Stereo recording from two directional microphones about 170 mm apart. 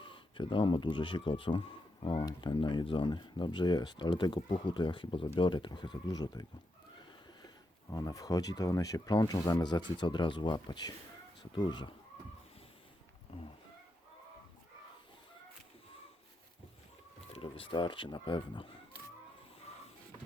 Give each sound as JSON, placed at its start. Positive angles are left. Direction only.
{"t": 0.0, "sound": "speech", "side_deg": 30}
{"t": 7.4, "sound": "speech", "side_deg": 20}
{"t": 17.3, "sound": "speech", "side_deg": 35}